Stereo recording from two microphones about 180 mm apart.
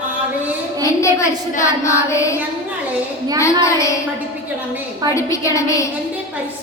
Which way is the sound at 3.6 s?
15° left (ahead or behind).